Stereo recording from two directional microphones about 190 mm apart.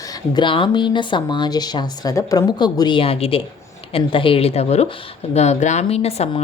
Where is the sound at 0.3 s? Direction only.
25° left (ahead or behind).